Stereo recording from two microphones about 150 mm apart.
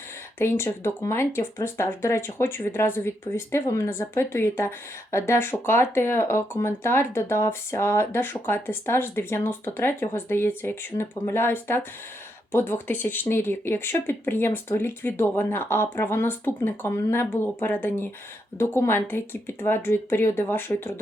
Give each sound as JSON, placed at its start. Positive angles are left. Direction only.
{"t": 0.3, "sound": "speech", "side_deg": 15}